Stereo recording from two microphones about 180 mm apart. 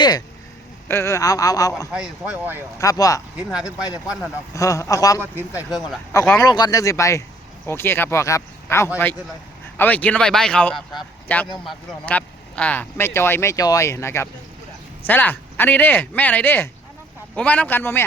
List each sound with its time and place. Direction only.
0.9 s speech: 15° left (ahead or behind)
1.9 s speech: 5° right (ahead or behind)
2.7 s speech: 20° left (ahead or behind)
3.3 s speech: 5° right (ahead or behind)
4.5 s speech: 15° left (ahead or behind)
6.4 s speech: 20° left (ahead or behind)